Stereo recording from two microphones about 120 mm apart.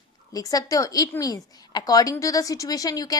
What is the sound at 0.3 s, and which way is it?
A woman's voice, 30° left (ahead or behind).